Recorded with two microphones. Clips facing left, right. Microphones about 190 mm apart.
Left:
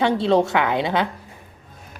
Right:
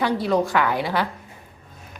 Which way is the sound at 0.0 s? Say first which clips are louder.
Left 3 dB; 25° left (ahead or behind).